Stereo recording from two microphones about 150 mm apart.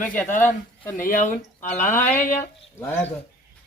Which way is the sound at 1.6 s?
15° left (ahead or behind).